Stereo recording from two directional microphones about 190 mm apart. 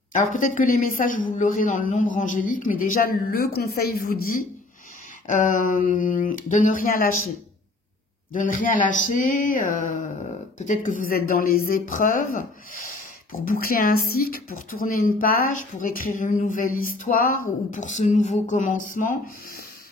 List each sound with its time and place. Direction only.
0.1 s speech: 40° left (ahead or behind)
8.3 s speech: 45° left (ahead or behind)